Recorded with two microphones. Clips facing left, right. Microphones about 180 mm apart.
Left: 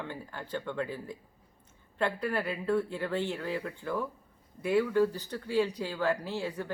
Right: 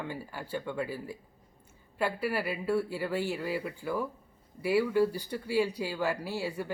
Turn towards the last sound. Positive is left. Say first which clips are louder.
# right 1 dB
turn(degrees=-10)  # may be behind; listen again after turning